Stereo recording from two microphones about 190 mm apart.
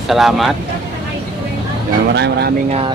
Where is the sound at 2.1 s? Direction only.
65° right (ahead or behind).